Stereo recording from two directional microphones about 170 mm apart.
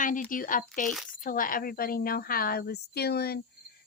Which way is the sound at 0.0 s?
50° left (ahead or behind).